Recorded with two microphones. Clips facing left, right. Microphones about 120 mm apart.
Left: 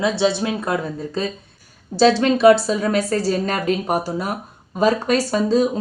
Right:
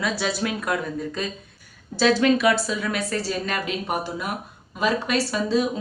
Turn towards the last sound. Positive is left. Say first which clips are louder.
# left 5 dB
turn(degrees=40)  # may be behind; listen again after turning